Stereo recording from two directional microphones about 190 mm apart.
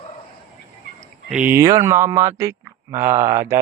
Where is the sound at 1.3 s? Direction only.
10° right (ahead or behind).